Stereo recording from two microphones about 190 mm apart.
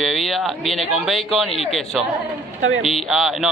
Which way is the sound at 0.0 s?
Centre (ahead or behind).